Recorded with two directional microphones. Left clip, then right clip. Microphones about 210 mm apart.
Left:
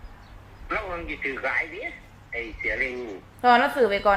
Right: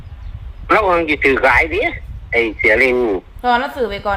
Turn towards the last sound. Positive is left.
turn(degrees=0)  # may be behind; listen again after turning